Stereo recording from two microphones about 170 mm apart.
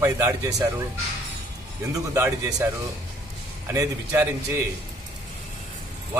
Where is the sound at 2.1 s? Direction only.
15° right (ahead or behind).